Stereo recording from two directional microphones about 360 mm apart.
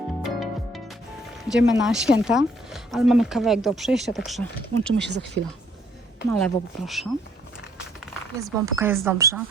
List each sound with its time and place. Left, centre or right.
0.2 s music: centre
1.5 s speech: centre
4.9 s speech: right
6.4 s speech: centre
8.4 s speech: centre